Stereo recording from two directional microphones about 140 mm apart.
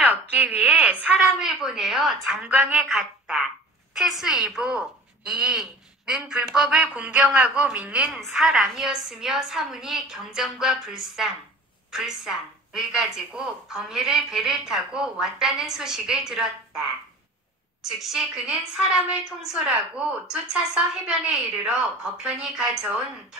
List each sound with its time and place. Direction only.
0.0 s a woman's voice: 10° right (ahead or behind)
17.8 s speech: centre (ahead or behind)
21.3 s speech: 5° right (ahead or behind)